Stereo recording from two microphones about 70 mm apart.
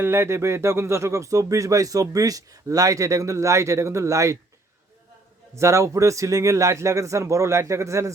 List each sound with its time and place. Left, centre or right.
0.0 s speech: right
5.5 s speech: right